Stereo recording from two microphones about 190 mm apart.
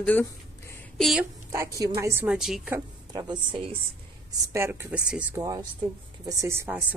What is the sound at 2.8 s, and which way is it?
Speech, 20° right (ahead or behind).